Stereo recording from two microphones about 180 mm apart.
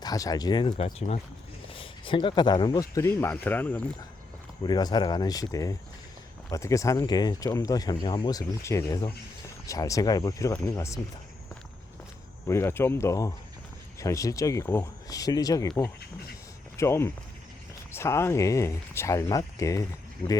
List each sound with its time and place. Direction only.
0.0 s speech: 20° left (ahead or behind)
0.9 s speech: 40° left (ahead or behind)
1.7 s speech: 30° left (ahead or behind); by 3.8 s 10° left (ahead or behind)
4.6 s speech: 25° left (ahead or behind)
12.5 s speech: 15° left (ahead or behind)
20.2 s speech: 30° left (ahead or behind)